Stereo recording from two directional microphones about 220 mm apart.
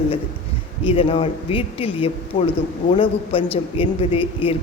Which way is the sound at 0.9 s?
25° left (ahead or behind).